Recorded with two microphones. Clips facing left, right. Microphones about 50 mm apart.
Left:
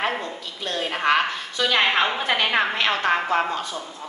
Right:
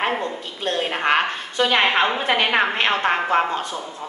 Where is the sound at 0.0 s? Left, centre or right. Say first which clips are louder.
Right 3 dB; right.